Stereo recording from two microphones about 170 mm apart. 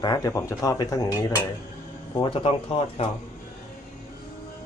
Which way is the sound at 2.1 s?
30° left (ahead or behind).